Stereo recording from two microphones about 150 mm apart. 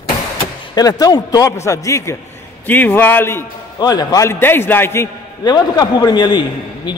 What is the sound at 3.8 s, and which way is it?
A man's voice, 25° left (ahead or behind).